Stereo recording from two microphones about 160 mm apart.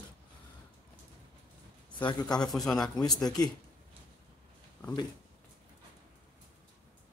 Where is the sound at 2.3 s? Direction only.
5° left (ahead or behind).